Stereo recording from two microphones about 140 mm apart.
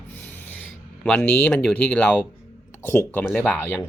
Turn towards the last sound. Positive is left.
turn(degrees=10)  # may be behind; listen again after turning